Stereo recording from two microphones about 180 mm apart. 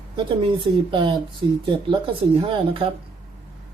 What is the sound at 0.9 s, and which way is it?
Speech, 25° right (ahead or behind).